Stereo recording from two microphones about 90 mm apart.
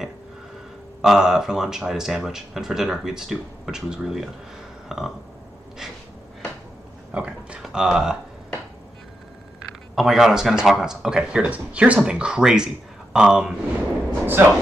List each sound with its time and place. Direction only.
1.0 s speech: 5° right (ahead or behind)
4.8 s burping: 5° right (ahead or behind)
7.1 s speech: 15° right (ahead or behind)
9.9 s speech: 5° right (ahead or behind)
14.2 s speech: 25° right (ahead or behind)